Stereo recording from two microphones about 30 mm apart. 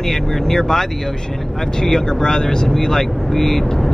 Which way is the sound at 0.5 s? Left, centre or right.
Centre.